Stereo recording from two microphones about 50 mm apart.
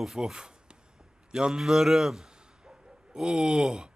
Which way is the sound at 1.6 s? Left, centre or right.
Centre.